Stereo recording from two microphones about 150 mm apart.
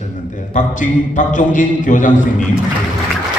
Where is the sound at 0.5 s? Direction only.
60° left (ahead or behind).